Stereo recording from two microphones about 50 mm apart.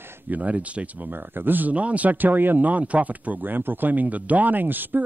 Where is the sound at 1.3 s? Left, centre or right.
Right.